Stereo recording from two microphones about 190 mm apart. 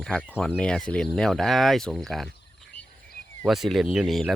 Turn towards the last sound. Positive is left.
turn(degrees=0)  # may be behind; listen again after turning